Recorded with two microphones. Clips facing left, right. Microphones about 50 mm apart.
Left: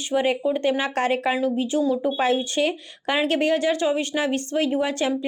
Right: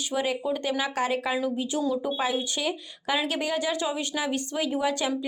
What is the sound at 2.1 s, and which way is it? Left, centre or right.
A woman's voice, left.